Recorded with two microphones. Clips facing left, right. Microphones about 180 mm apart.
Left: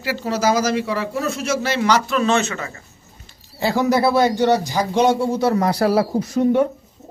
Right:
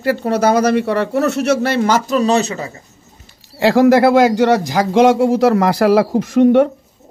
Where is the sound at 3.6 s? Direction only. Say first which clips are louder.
Right 7 dB; 90° right.